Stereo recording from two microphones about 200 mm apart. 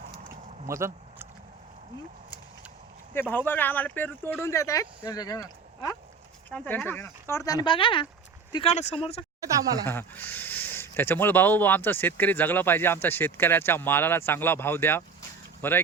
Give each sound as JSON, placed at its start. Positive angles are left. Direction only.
{"t": 0.7, "sound": "a sound", "side_deg": -15}
{"t": 3.2, "sound": "speech", "side_deg": 10}
{"t": 6.5, "sound": "speech", "side_deg": 5}
{"t": 9.4, "sound": "speech", "side_deg": -20}
{"t": 9.8, "sound": "speech", "side_deg": 10}